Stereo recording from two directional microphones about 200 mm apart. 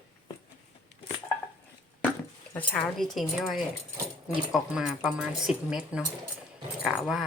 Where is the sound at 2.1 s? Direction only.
10° left (ahead or behind).